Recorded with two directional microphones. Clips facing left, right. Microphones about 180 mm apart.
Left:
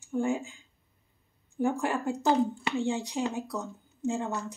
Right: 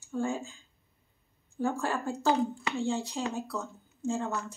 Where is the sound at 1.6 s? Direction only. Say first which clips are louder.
Left 2 dB; 15° left (ahead or behind).